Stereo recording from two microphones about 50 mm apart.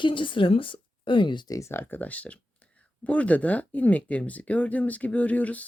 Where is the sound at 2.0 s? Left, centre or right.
Left.